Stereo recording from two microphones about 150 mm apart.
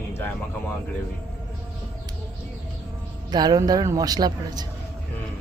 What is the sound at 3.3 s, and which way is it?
Speech, 30° right (ahead or behind).